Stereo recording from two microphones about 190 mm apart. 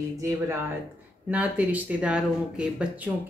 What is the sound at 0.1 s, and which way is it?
A woman's voice, 15° right (ahead or behind).